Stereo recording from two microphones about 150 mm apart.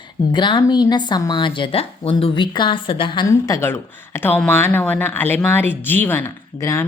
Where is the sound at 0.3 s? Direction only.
30° left (ahead or behind).